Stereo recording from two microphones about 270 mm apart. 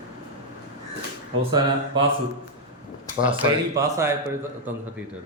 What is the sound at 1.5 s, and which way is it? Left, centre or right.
Speech, centre.